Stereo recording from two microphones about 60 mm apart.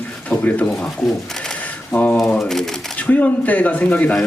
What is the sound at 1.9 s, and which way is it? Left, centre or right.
Speech, left.